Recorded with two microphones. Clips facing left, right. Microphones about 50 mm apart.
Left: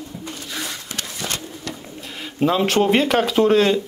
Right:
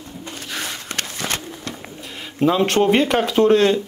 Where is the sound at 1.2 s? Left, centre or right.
Right.